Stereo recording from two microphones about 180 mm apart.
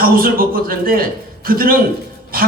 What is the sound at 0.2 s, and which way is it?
A man's voice, 55° right (ahead or behind).